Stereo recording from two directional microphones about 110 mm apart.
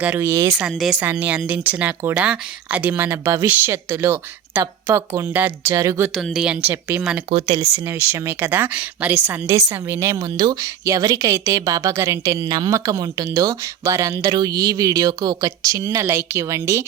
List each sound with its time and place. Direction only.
0.2 s a woman's voice: 25° right (ahead or behind)
0.6 s speech: 5° right (ahead or behind)
1.0 s a woman's voice: 15° right (ahead or behind)
5.7 s a woman's voice: 30° right (ahead or behind)
6.4 s speech: 15° right (ahead or behind)
7.3 s speech: 65° right (ahead or behind)
7.9 s speech: 20° right (ahead or behind)
9.5 s a woman's voice: 30° right (ahead or behind)